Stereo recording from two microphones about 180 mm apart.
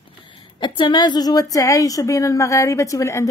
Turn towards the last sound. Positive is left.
turn(degrees=15)  # may be behind; listen again after turning